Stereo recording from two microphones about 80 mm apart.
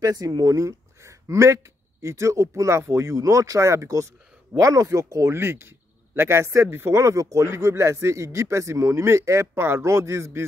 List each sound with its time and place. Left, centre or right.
0.0 s speech: right